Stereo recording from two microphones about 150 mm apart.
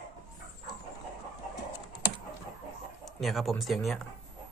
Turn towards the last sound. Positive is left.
turn(degrees=0)  # may be behind; listen again after turning